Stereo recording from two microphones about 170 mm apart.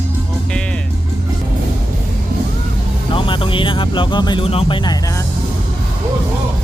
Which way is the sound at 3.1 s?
30° left (ahead or behind).